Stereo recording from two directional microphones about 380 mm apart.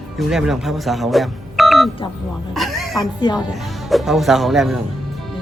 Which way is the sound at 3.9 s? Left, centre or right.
Centre.